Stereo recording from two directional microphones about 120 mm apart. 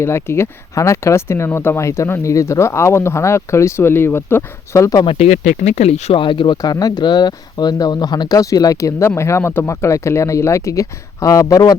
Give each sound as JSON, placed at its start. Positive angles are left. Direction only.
{"t": 0.0, "sound": "speech", "side_deg": 20}
{"t": 5.0, "sound": "speech", "side_deg": 65}
{"t": 6.1, "sound": "speech", "side_deg": 45}